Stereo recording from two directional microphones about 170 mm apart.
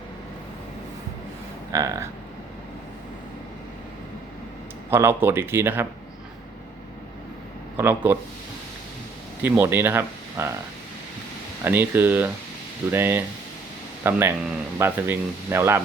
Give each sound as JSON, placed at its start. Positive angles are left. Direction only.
{"t": 1.7, "sound": "speech", "side_deg": -20}
{"t": 4.9, "sound": "speech", "side_deg": -15}
{"t": 7.8, "sound": "speech", "side_deg": -10}
{"t": 9.4, "sound": "speech", "side_deg": -10}
{"t": 11.6, "sound": "speech", "side_deg": -10}